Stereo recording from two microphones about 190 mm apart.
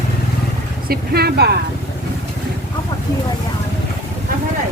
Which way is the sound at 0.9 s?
55° right (ahead or behind).